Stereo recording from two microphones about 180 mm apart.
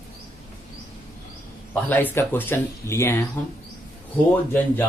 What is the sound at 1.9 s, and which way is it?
Speech, 10° left (ahead or behind).